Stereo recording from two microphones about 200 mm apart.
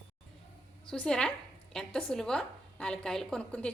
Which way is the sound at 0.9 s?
5° left (ahead or behind).